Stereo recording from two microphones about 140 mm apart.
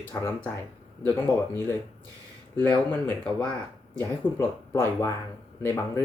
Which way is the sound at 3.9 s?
15° left (ahead or behind).